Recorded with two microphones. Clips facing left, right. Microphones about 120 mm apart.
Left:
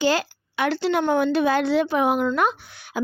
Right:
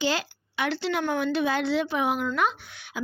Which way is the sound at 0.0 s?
45° left (ahead or behind).